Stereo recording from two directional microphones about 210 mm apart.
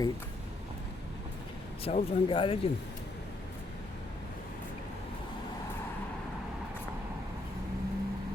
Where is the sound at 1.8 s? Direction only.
25° left (ahead or behind).